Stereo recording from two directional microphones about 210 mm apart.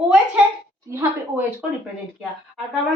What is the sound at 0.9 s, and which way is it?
Speech, 10° right (ahead or behind).